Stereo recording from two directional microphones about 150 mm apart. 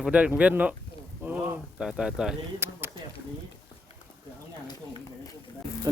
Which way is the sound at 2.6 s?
15° right (ahead or behind).